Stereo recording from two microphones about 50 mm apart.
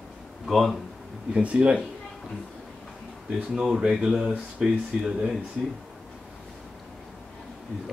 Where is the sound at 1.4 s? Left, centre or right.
Right.